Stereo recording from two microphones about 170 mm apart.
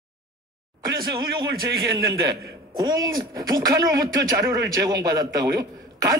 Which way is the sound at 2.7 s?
25° right (ahead or behind).